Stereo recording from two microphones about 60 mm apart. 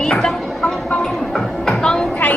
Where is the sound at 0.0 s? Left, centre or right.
Centre.